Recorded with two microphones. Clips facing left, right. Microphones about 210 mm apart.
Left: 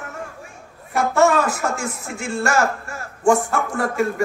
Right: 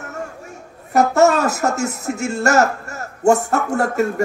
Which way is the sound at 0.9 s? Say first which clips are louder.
Right 3 dB; 40° right (ahead or behind).